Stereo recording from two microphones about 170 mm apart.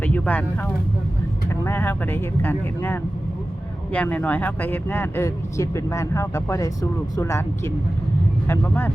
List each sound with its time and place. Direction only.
0.0 s vehicle: 10° left (ahead or behind)
1.5 s speech: 15° left (ahead or behind)